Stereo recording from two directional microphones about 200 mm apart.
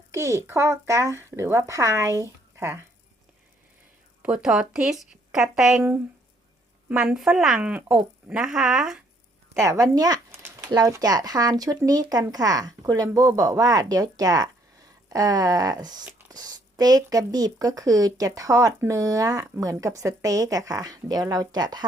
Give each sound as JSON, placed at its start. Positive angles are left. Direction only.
{"t": 0.1, "sound": "speech", "side_deg": -15}
{"t": 4.2, "sound": "speech", "side_deg": -5}
{"t": 6.8, "sound": "speech", "side_deg": -5}
{"t": 9.6, "sound": "speech", "side_deg": -15}